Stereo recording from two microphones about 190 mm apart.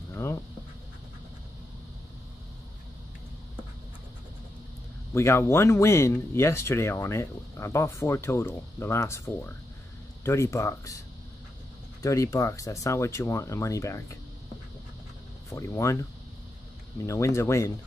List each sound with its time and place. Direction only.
0.1 s a sound: 15° left (ahead or behind)
5.1 s speech: 15° left (ahead or behind)
12.0 s speech: 15° left (ahead or behind)
15.5 s speech: 15° left (ahead or behind)